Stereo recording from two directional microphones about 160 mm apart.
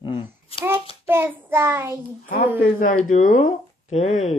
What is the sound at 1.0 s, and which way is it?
Speech, 15° right (ahead or behind).